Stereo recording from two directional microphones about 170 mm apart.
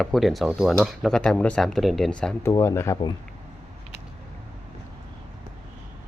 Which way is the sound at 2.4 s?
20° left (ahead or behind).